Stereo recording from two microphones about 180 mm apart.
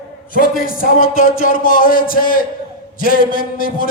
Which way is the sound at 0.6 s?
50° left (ahead or behind).